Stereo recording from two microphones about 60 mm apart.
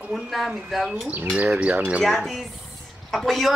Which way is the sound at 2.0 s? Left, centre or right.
Centre.